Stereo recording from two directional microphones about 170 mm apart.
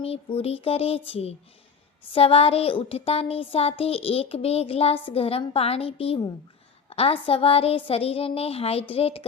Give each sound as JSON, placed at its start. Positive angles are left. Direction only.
{"t": 0.0, "sound": "child singing", "side_deg": 35}